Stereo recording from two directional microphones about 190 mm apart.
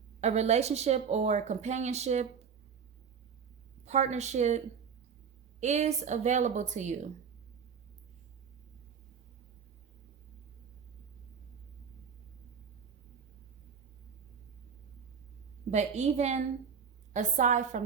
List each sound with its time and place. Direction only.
0.2 s speech: 35° right (ahead or behind)
3.8 s speech: 35° right (ahead or behind)
15.7 s speech: 35° right (ahead or behind)